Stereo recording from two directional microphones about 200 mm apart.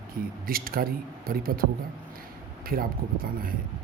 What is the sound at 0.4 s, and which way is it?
Speech, 45° right (ahead or behind).